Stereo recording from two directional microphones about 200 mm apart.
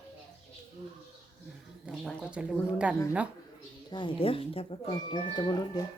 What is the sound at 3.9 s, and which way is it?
Speech, 25° left (ahead or behind).